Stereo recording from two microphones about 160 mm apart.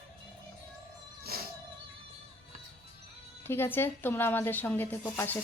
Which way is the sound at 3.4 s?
15° left (ahead or behind).